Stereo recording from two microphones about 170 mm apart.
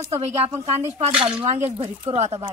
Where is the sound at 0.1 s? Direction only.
35° right (ahead or behind).